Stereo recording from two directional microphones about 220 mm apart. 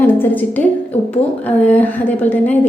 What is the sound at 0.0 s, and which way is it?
A woman's voice, 10° left (ahead or behind).